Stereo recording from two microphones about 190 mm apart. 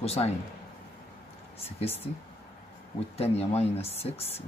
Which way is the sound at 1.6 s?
30° left (ahead or behind).